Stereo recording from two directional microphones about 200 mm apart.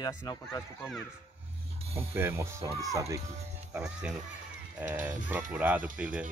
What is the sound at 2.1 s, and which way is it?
Speech, 10° right (ahead or behind).